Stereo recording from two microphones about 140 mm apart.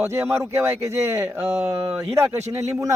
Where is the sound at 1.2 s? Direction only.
15° right (ahead or behind).